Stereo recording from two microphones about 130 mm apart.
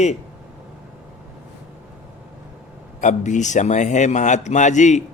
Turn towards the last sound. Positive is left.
turn(degrees=65)  # may be behind; listen again after turning